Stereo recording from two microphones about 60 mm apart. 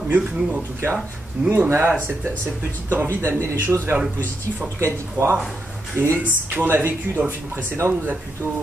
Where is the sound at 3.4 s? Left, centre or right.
Right.